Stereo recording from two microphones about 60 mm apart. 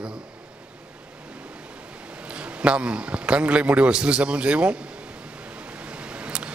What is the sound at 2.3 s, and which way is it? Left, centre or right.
A man's voice, centre.